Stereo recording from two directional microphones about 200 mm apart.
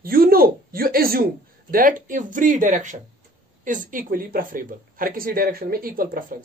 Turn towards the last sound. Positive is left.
turn(degrees=-45)  # may be behind; listen again after turning